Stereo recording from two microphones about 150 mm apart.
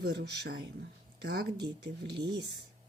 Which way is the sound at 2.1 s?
30° right (ahead or behind).